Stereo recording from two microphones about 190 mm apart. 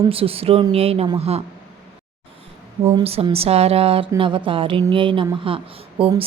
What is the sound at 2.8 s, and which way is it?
A woman's voice, 30° right (ahead or behind).